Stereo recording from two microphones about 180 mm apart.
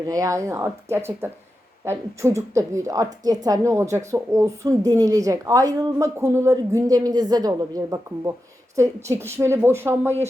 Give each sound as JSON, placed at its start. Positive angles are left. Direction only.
{"t": 0.0, "sound": "a woman's voice", "side_deg": -20}